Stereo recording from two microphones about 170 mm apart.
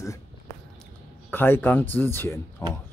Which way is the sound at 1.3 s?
10° left (ahead or behind).